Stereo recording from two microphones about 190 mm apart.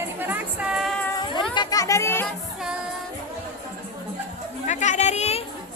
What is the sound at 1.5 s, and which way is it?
Music, 20° left (ahead or behind).